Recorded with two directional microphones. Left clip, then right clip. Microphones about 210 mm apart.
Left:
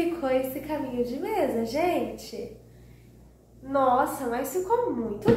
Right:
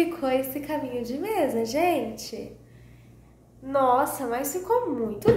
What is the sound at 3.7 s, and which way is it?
Speech, 50° right (ahead or behind).